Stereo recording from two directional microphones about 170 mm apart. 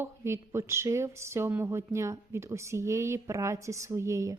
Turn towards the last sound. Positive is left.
turn(degrees=-20)  # may be behind; listen again after turning